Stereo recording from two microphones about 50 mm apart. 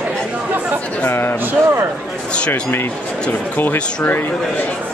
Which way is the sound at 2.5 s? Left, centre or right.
Left.